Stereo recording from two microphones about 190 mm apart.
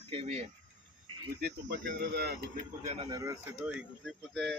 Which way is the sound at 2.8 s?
30° right (ahead or behind).